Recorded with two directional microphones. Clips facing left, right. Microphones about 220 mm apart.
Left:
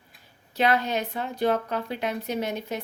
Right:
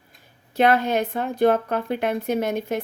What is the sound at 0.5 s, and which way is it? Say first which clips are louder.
Speech: right 5 dB; 50° right (ahead or behind).